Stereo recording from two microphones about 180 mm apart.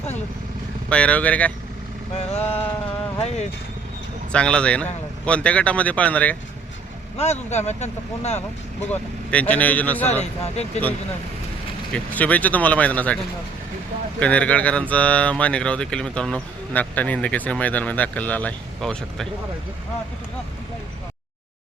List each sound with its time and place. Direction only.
0.9 s speech: 5° left (ahead or behind)
2.1 s speech: 35° left (ahead or behind)
4.3 s speech: 5° left (ahead or behind)
7.2 s speech: 40° left (ahead or behind)
8.9 s speech: 10° left (ahead or behind)
10.4 s speech: 35° left (ahead or behind)
11.9 s speech: 10° left (ahead or behind)
14.2 s speech: 5° left (ahead or behind)